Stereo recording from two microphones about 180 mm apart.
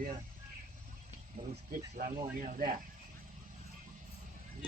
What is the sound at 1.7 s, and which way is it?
Speech, 50° right (ahead or behind).